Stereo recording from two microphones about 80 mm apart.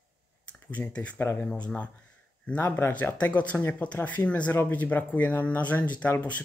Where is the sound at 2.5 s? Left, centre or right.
Left.